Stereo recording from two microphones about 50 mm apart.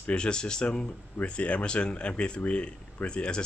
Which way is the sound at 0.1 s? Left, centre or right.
Centre.